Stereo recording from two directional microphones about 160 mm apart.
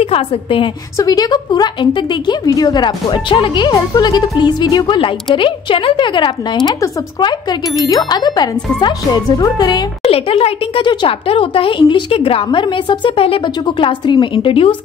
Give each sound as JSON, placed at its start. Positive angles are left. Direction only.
{"t": 0.0, "sound": "speech", "side_deg": 35}
{"t": 0.9, "sound": "a woman's voice", "side_deg": 25}
{"t": 10.0, "sound": "speech", "side_deg": 35}